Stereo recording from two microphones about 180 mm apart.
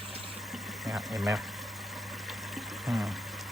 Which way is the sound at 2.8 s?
5° right (ahead or behind).